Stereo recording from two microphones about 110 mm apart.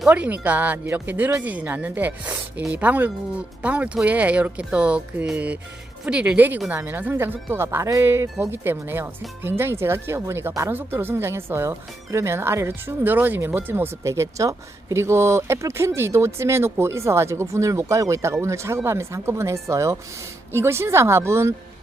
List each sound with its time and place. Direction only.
0.1 s speech: 15° right (ahead or behind)